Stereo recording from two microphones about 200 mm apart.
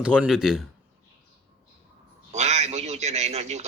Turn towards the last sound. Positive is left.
turn(degrees=-35)  # may be behind; listen again after turning